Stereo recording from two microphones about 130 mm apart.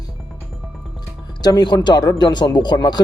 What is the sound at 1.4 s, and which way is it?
Speech, 30° left (ahead or behind).